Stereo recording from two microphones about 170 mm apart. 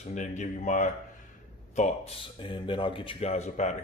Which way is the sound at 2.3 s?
30° left (ahead or behind).